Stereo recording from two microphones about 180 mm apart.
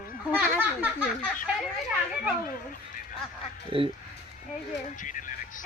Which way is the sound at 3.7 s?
30° right (ahead or behind).